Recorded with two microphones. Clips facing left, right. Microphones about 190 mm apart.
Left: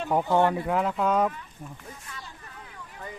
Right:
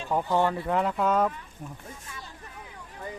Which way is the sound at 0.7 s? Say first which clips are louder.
Even; centre (ahead or behind).